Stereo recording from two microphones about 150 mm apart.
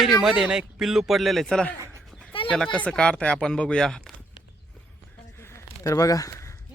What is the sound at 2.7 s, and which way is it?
Speech, 5° left (ahead or behind).